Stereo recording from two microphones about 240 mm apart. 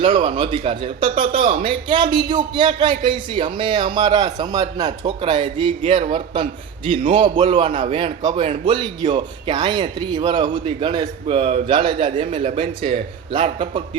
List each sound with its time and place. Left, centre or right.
0.2 s speech: centre